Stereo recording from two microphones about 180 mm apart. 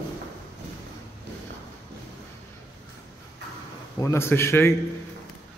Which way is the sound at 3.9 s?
15° left (ahead or behind).